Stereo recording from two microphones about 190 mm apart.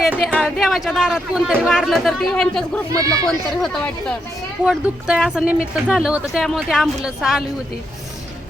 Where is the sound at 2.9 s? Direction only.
15° right (ahead or behind).